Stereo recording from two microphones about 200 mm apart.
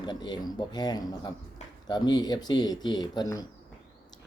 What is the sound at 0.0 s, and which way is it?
Speech, 20° left (ahead or behind).